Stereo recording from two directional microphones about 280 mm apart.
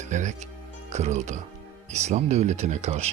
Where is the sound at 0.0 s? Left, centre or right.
Right.